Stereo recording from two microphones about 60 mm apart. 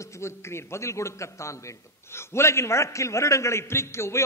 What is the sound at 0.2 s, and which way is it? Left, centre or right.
A man's voice, left.